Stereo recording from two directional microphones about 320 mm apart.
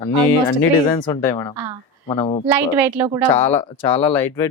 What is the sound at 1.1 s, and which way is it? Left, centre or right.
A woman's voice, centre.